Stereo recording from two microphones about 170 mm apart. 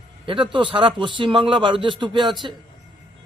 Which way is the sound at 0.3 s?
30° right (ahead or behind).